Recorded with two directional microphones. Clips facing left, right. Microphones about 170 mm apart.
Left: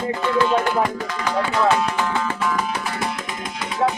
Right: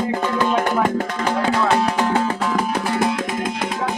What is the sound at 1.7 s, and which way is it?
Music, 35° right (ahead or behind).